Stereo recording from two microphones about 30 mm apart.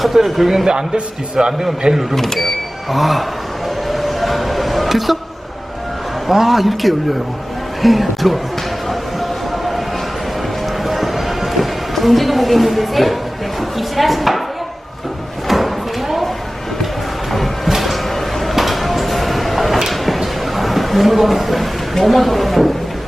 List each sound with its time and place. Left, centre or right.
0.1 s a man's voice: centre
0.6 s a man's voice: right
2.1 s speech: centre
2.9 s speech: centre
3.9 s a sound: centre
6.2 s a man's voice: centre
10.8 s a sound: centre
11.5 s speech: centre
13.6 s chopping: centre
15.4 s drawer open or close: centre
17.7 s a sound: centre
18.5 s vehicle: centre
19.9 s a sound: centre